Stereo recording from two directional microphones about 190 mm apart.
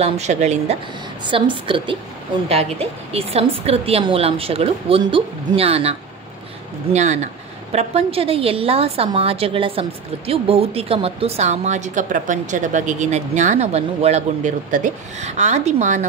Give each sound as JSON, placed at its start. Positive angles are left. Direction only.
{"t": 0.0, "sound": "a woman's voice", "side_deg": -35}
{"t": 1.2, "sound": "a woman's voice", "side_deg": -25}